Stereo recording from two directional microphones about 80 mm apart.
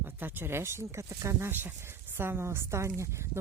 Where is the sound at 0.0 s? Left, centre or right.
Right.